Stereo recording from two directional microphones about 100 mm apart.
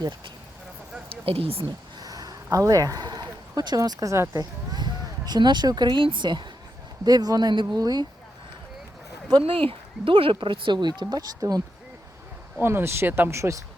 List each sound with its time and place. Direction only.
1.1 s speech: 75° right (ahead or behind)
2.0 s speech: 40° right (ahead or behind)
9.4 s speech: 65° right (ahead or behind); by 11.6 s 40° right (ahead or behind)
12.5 s speech: 25° right (ahead or behind)